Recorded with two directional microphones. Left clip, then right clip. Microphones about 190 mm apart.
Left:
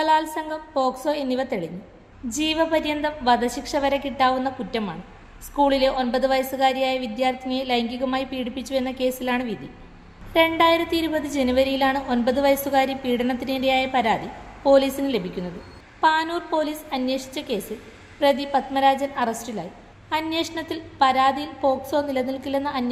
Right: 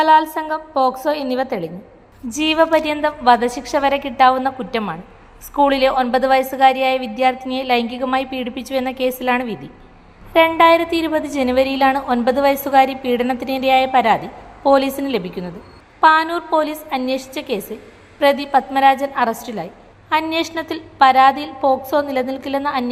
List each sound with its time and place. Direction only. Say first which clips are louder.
0.0 s a woman's voice: right 8 dB; 20° right (ahead or behind)